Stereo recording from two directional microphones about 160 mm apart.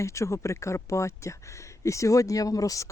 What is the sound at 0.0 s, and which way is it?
Speech, 20° left (ahead or behind).